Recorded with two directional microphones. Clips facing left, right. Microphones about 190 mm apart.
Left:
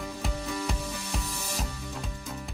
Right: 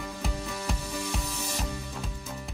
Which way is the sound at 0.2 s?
Centre (ahead or behind).